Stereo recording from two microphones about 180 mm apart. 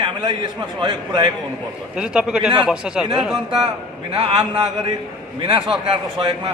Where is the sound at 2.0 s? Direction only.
5° right (ahead or behind).